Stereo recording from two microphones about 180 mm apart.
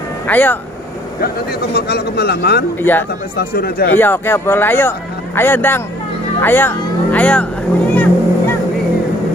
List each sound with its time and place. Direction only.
0.3 s speech: 10° left (ahead or behind)
1.2 s speech: 60° left (ahead or behind)
2.8 s speech: 10° left (ahead or behind)
3.3 s speech: 60° left (ahead or behind)
3.9 s speech: 10° left (ahead or behind)
7.9 s vehicle: 10° left (ahead or behind)